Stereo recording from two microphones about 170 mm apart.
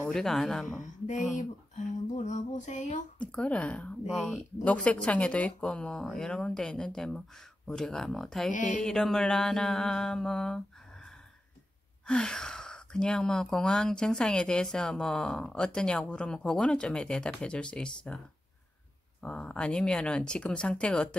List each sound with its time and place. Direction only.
0.1 s speech: centre (ahead or behind)
1.0 s a sound: 45° left (ahead or behind)
3.2 s a woman's voice: 5° left (ahead or behind)
8.5 s a sound: 50° left (ahead or behind)
8.7 s speech: 5° left (ahead or behind)
12.1 s speech: 5° left (ahead or behind)
19.2 s speech: 5° left (ahead or behind)